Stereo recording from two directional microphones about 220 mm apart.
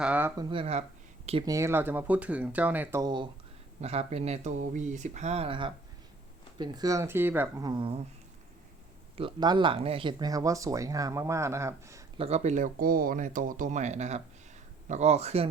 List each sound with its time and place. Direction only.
0.0 s speech: 10° right (ahead or behind)
0.5 s speech: 30° right (ahead or behind)
1.5 s speech: 15° right (ahead or behind)
3.8 s speech: 30° right (ahead or behind); by 7.7 s 10° right (ahead or behind)
7.7 s speech: 25° right (ahead or behind)
9.1 s speech: 20° right (ahead or behind)
12.1 s speech: 25° right (ahead or behind)